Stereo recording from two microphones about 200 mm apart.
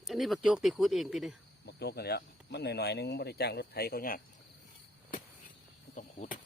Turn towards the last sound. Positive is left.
turn(degrees=40)  # may be behind; listen again after turning